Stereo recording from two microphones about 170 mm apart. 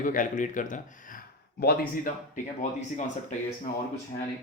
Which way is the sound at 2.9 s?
45° left (ahead or behind).